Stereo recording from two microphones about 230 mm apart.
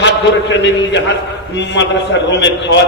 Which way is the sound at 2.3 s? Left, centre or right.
Left.